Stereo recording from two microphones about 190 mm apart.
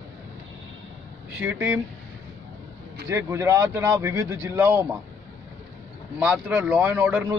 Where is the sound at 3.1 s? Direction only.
15° right (ahead or behind).